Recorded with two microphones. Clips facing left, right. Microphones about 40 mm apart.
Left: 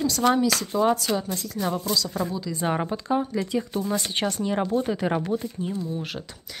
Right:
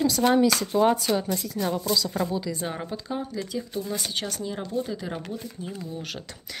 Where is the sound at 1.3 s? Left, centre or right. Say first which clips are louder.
Even; centre.